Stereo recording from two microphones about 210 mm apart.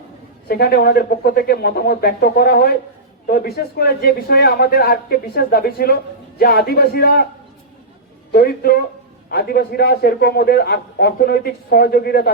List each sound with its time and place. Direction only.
0.4 s a man's voice: 50° left (ahead or behind)
8.3 s a man's voice: 45° left (ahead or behind)